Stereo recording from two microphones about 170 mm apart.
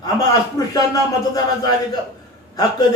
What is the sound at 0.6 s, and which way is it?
Speech, 20° left (ahead or behind).